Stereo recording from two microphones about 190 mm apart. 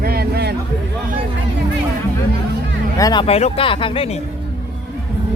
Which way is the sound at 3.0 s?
20° left (ahead or behind).